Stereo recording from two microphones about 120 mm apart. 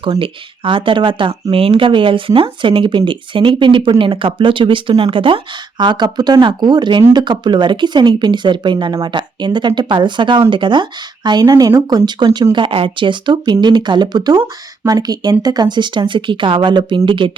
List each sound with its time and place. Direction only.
0.0 s speech: 45° right (ahead or behind)